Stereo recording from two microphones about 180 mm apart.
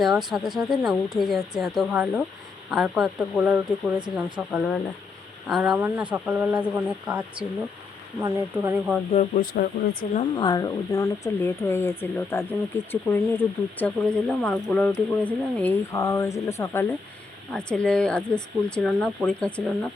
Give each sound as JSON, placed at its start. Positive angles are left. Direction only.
{"t": 0.0, "sound": "speech", "side_deg": 0}
{"t": 9.1, "sound": "speech", "side_deg": 50}
{"t": 10.2, "sound": "speech", "side_deg": 25}